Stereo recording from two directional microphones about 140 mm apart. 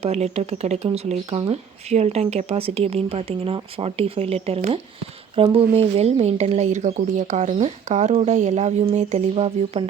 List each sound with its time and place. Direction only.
0.0 s speech: 50° right (ahead or behind)